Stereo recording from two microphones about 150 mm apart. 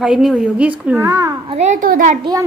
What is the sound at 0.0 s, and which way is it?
A woman's voice, 5° right (ahead or behind).